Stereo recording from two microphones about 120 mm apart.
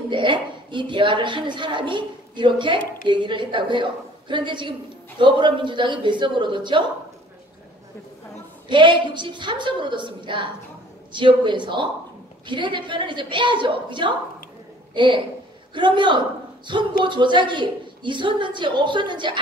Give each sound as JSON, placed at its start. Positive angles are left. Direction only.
{"t": 0.1, "sound": "speech", "side_deg": -40}
{"t": 8.6, "sound": "speech", "side_deg": -40}